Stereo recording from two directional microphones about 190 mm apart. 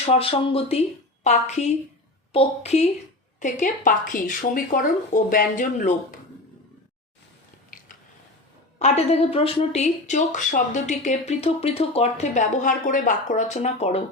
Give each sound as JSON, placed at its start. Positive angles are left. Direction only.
{"t": 0.0, "sound": "speech", "side_deg": 30}
{"t": 3.4, "sound": "speech", "side_deg": 45}
{"t": 8.8, "sound": "speech", "side_deg": 35}